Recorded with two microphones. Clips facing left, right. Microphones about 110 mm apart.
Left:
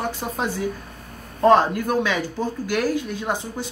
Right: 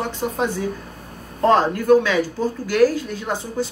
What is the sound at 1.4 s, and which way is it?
Speech, 15° left (ahead or behind).